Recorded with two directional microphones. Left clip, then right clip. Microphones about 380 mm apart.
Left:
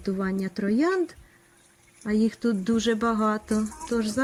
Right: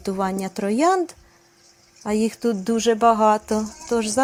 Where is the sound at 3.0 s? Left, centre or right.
Right.